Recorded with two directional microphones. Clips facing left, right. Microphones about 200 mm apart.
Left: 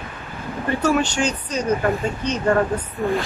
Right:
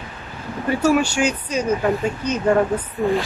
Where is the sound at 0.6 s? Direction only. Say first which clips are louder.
Right 2 dB; 10° right (ahead or behind).